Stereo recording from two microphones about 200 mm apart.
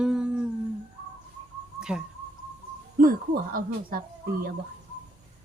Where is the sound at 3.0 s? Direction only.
45° right (ahead or behind).